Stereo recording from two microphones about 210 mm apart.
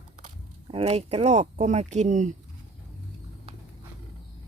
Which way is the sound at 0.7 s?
30° right (ahead or behind).